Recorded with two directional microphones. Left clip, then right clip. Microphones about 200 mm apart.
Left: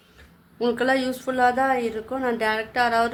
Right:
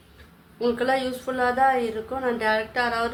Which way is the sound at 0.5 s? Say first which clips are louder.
Left 1 dB; 50° left (ahead or behind).